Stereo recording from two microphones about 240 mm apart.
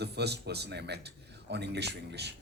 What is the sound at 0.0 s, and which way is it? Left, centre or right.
Speech, right.